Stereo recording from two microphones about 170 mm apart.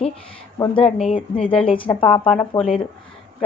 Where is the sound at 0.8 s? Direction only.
Centre (ahead or behind).